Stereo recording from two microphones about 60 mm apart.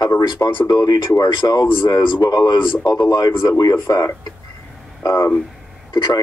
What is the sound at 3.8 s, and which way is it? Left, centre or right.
Speech, left.